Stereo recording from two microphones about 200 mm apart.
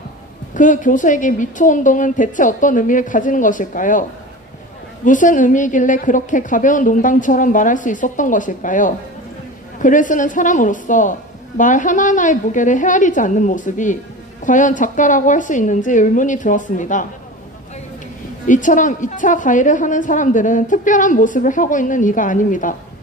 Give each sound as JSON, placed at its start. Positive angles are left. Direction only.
{"t": 0.5, "sound": "a woman's voice", "side_deg": 40}
{"t": 5.0, "sound": "a woman's voice", "side_deg": 40}
{"t": 18.4, "sound": "a woman's voice", "side_deg": 40}